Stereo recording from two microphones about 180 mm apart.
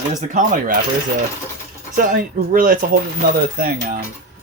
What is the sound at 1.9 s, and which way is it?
Speech, 50° right (ahead or behind).